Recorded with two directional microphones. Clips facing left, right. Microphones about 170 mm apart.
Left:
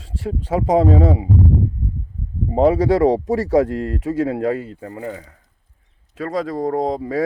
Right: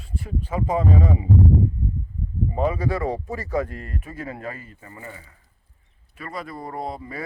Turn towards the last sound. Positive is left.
turn(degrees=90)